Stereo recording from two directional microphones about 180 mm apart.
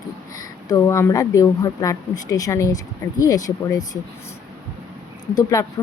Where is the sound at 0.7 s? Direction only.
15° left (ahead or behind).